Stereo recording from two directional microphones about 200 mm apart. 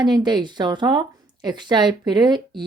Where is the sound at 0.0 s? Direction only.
20° right (ahead or behind).